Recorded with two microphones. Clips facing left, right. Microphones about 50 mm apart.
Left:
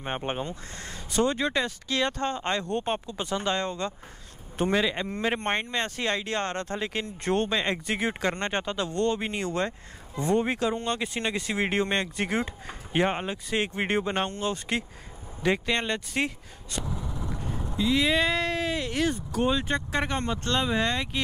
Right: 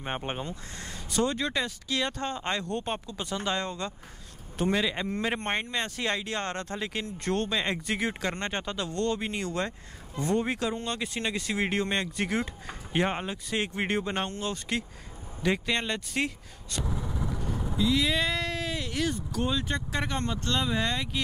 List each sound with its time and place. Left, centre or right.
0.0 s speech: centre
2.6 s speech: centre
3.4 s speech: centre
6.8 s speech: centre
16.8 s vehicle: centre
17.4 s vehicle: centre
17.7 s speech: left